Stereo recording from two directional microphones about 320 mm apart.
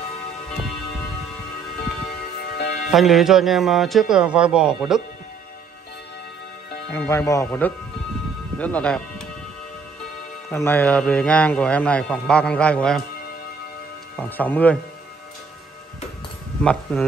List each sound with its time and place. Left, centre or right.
2.5 s music: left
2.9 s a man's voice: centre
6.9 s speech: centre
10.5 s a man's voice: centre
14.1 s a man's voice: centre
16.9 s a man's voice: centre